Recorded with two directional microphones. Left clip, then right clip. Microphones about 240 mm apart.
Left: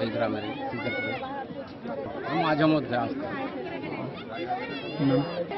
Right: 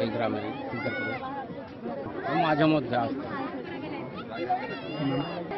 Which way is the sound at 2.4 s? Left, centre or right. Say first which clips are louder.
Even; centre.